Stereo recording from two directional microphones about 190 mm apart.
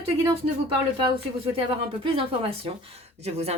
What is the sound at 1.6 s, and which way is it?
Speech, 30° right (ahead or behind).